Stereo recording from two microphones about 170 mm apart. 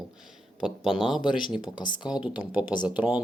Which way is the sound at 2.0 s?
5° right (ahead or behind).